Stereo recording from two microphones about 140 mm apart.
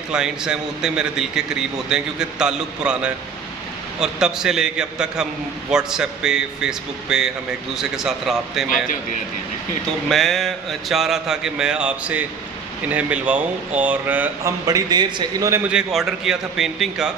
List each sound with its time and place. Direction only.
0.1 s a man's voice: 5° right (ahead or behind)
10.0 s a man's voice: centre (ahead or behind)
14.7 s a man's voice: 30° right (ahead or behind)
15.7 s a man's voice: centre (ahead or behind)